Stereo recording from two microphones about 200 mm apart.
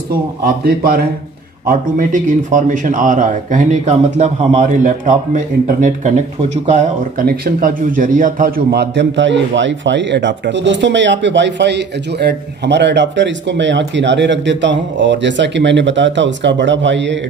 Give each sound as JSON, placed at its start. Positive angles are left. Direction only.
{"t": 0.7, "sound": "a man's voice", "side_deg": -50}